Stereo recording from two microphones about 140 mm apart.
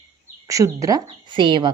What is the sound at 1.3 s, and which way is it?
Speech, 35° right (ahead or behind).